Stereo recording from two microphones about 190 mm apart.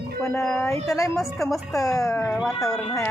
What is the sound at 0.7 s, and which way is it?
Speech, 15° left (ahead or behind).